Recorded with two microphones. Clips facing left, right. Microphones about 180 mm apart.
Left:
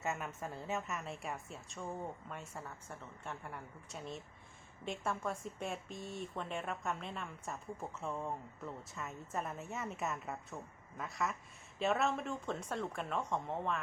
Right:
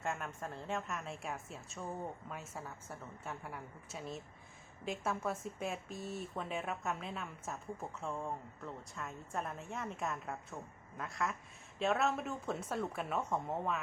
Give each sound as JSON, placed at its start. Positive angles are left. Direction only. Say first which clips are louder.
{"t": 0.0, "sound": "speech", "louder": "even", "side_deg": 5}